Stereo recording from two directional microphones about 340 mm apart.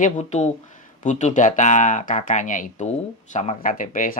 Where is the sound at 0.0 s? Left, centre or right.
Left.